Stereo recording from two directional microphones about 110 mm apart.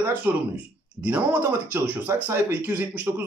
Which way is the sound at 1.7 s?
15° right (ahead or behind).